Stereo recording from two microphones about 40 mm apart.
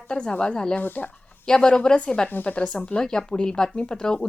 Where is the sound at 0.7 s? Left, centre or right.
Left.